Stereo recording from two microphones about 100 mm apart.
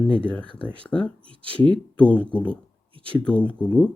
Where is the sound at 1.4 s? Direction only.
60° right (ahead or behind).